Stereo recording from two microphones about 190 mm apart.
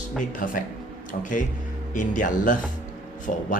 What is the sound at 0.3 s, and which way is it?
Speech, 45° left (ahead or behind).